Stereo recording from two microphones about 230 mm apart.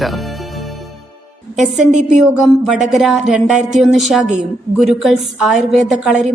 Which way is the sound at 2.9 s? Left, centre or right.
Centre.